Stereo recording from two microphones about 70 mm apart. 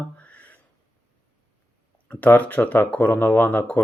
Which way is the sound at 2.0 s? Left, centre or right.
Left.